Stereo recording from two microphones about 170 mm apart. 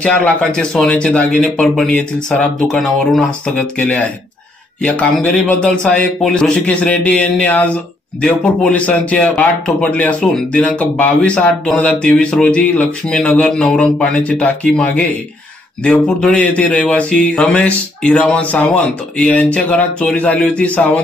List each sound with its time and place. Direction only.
0.0 s a man's voice: 5° left (ahead or behind)